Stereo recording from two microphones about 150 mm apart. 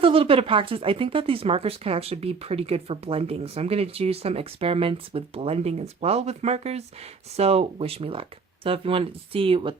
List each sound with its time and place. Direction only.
0.0 s speech: 40° right (ahead or behind)